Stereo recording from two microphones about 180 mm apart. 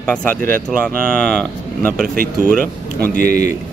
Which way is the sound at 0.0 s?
5° left (ahead or behind).